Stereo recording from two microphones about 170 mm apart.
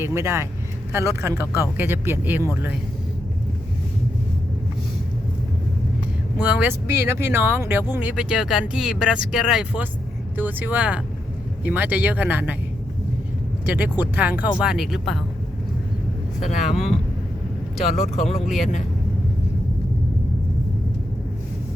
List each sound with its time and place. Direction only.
0.0 s speech: 15° right (ahead or behind)
6.4 s speech: 10° right (ahead or behind)
13.7 s speech: 10° right (ahead or behind)
16.5 s speech: 45° left (ahead or behind)
18.2 s speech: 40° left (ahead or behind)